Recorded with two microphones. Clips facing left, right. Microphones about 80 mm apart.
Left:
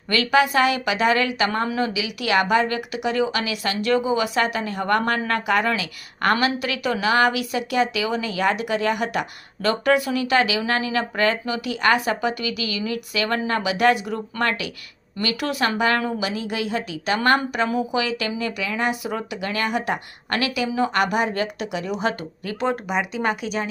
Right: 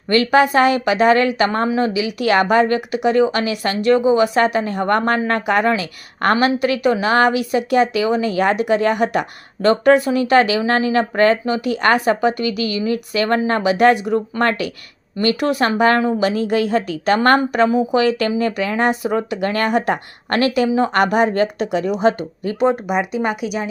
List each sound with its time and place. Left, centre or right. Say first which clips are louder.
0.1 s a woman's voice: right 5 dB; right
22.0 s speech: right 8 dB; right
22.7 s speech: right 5 dB; centre